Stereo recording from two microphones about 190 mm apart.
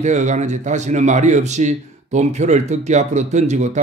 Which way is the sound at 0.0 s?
40° right (ahead or behind).